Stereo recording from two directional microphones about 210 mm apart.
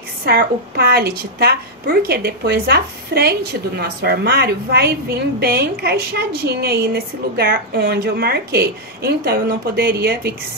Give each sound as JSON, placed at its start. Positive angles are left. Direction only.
{"t": 0.2, "sound": "a woman's voice", "side_deg": -50}